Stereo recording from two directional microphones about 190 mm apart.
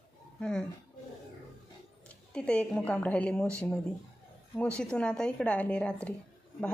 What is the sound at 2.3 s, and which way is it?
A woman's voice, 5° left (ahead or behind).